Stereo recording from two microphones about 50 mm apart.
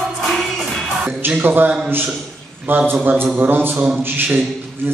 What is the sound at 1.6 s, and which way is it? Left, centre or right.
Speech, right.